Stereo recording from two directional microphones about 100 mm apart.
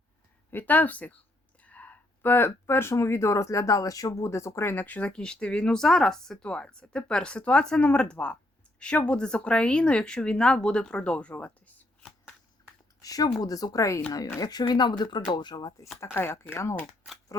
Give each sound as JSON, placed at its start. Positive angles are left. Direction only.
{"t": 0.5, "sound": "speech", "side_deg": 15}
{"t": 13.0, "sound": "speech", "side_deg": 35}
{"t": 14.4, "sound": "speech", "side_deg": 45}
{"t": 16.0, "sound": "speech", "side_deg": 25}